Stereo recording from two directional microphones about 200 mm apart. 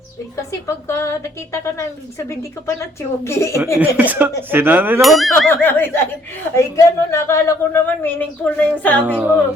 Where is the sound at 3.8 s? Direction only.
10° right (ahead or behind); by 9.1 s 10° left (ahead or behind).